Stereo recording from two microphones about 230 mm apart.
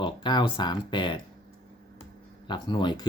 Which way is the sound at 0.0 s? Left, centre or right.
Centre.